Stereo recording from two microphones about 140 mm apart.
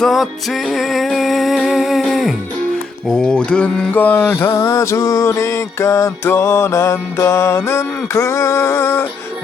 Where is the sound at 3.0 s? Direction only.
5° left (ahead or behind).